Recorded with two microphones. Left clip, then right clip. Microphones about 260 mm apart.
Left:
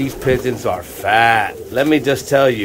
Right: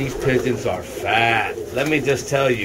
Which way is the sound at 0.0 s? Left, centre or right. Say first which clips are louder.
Left 3 dB; centre.